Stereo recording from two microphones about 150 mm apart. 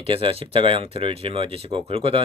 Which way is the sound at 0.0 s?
40° right (ahead or behind).